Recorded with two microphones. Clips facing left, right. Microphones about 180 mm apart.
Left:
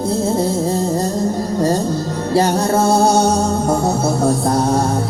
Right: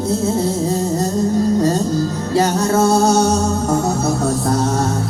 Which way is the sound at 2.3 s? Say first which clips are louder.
Left 1 dB; 30° left (ahead or behind).